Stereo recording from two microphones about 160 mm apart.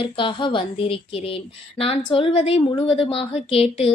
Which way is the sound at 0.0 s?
30° left (ahead or behind).